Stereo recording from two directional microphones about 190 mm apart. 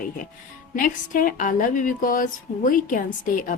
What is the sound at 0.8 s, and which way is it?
A woman's voice, 45° left (ahead or behind).